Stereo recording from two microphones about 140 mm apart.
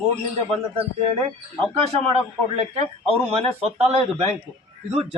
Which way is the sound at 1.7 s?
45° right (ahead or behind).